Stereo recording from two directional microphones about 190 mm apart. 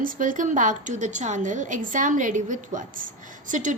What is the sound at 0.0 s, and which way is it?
A woman's voice, 45° right (ahead or behind).